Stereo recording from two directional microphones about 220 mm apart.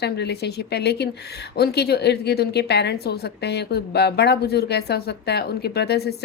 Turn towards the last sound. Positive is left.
turn(degrees=45)  # may be behind; listen again after turning